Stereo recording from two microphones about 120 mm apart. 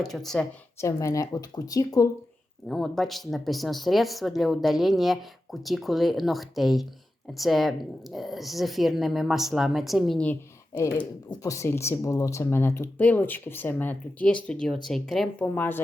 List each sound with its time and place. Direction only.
0.0 s speech: 5° left (ahead or behind)
0.8 s speech: 25° left (ahead or behind)
2.6 s speech: 5° left (ahead or behind)
11.4 s speech: 25° left (ahead or behind); by 15.4 s centre (ahead or behind)
15.5 s speech: 15° left (ahead or behind)